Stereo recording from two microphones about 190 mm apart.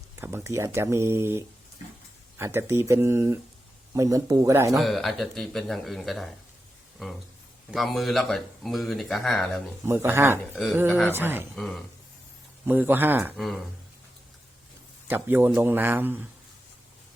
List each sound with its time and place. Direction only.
0.2 s speech: 15° right (ahead or behind)
4.8 s speech: centre (ahead or behind)
7.7 s speech: centre (ahead or behind)
9.8 s speech: 15° right (ahead or behind)
10.5 s speech: centre (ahead or behind)
11.1 s speech: 10° right (ahead or behind)
11.5 s speech: centre (ahead or behind)
12.6 s speech: 10° right (ahead or behind)
13.3 s speech: centre (ahead or behind)
15.0 s speech: 10° right (ahead or behind)